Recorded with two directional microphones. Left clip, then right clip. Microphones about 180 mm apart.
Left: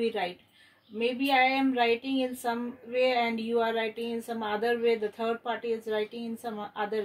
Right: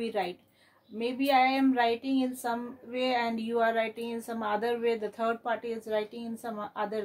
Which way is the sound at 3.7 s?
65° right (ahead or behind).